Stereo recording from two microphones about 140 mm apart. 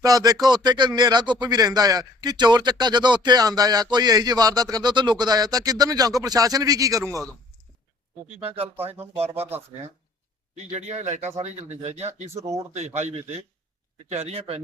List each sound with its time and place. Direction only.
0.0 s speech: 25° right (ahead or behind)
8.4 s speech: 40° right (ahead or behind)